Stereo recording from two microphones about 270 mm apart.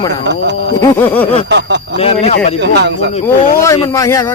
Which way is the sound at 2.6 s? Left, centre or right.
Right.